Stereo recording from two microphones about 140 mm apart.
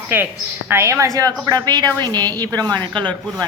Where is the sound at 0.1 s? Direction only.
15° right (ahead or behind).